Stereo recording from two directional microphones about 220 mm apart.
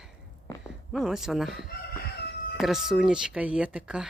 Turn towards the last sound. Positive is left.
turn(degrees=-5)  # may be behind; listen again after turning